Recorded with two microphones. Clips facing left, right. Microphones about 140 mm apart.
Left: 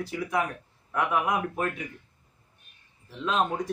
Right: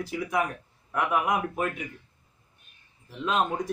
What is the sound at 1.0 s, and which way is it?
Speech, 5° right (ahead or behind).